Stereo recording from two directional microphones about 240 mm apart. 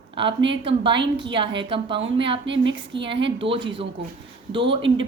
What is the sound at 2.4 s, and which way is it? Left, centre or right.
Speech, right.